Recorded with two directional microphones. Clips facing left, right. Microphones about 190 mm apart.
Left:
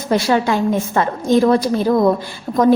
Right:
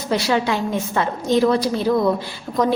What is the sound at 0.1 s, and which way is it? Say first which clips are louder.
A woman's voice: left 4 dB; 50° left (ahead or behind).